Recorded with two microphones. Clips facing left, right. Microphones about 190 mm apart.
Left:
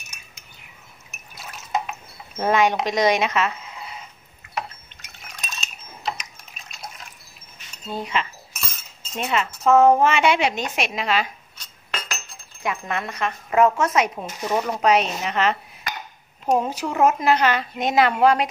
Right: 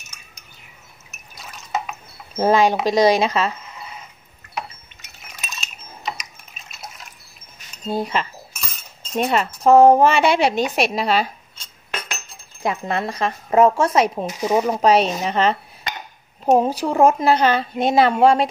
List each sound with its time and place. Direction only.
2.3 s a woman's voice: 30° right (ahead or behind)
5.4 s a sound: 5° right (ahead or behind)
6.0 s liquid: centre (ahead or behind)
7.9 s a woman's voice: 40° right (ahead or behind)
8.6 s cutlery: centre (ahead or behind)
9.1 s a woman's voice: 35° right (ahead or behind)
10.8 s cutlery: 35° right (ahead or behind)
12.6 s a woman's voice: 30° right (ahead or behind)
14.4 s speech: 10° right (ahead or behind)
14.8 s dishes: 30° right (ahead or behind)
16.5 s a woman's voice: 35° right (ahead or behind)